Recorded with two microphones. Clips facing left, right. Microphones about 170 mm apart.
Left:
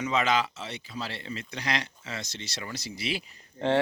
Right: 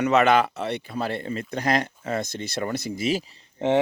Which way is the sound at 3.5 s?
20° right (ahead or behind).